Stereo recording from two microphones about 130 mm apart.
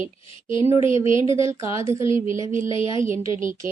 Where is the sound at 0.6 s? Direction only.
50° left (ahead or behind).